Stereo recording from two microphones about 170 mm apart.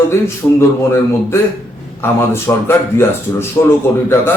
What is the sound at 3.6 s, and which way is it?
Speech, 30° left (ahead or behind).